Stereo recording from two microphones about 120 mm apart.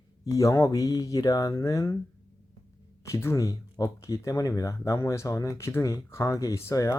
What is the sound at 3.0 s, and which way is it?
Speech, 25° left (ahead or behind).